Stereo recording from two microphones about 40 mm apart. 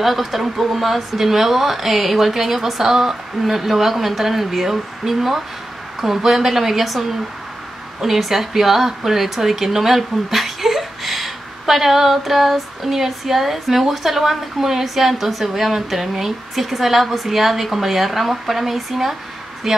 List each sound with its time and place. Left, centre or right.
0.0 s speech: centre